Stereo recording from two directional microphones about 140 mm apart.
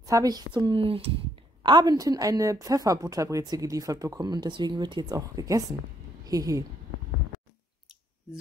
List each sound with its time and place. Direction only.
0.0 s speech: 25° right (ahead or behind); by 1.1 s 40° right (ahead or behind)
1.6 s speech: 30° right (ahead or behind)